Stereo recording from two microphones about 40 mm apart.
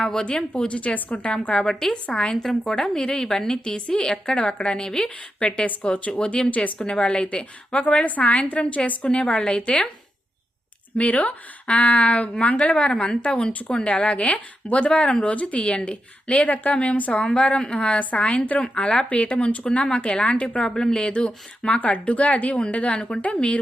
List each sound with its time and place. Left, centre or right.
0.0 s a woman's voice: centre
0.5 s a woman's voice: left
2.3 s a woman's voice: centre
8.0 s a woman's voice: left
9.0 s a woman's voice: left
10.9 s a woman's voice: left
18.6 s a woman's voice: left
19.8 s a woman's voice: left
20.1 s a woman's voice: left
20.6 s a woman's voice: centre
21.0 s a woman's voice: left
21.9 s a woman's voice: left